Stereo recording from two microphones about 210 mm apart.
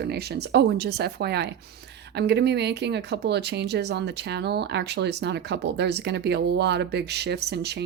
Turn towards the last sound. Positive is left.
turn(degrees=-50)  # may be behind; listen again after turning